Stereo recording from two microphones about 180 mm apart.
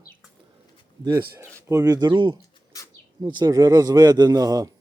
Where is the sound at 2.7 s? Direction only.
20° left (ahead or behind).